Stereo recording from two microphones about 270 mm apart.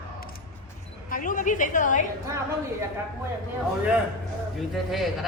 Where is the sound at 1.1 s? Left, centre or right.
Left.